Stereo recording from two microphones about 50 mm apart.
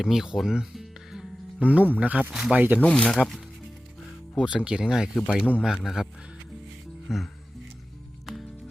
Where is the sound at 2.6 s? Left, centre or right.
Right.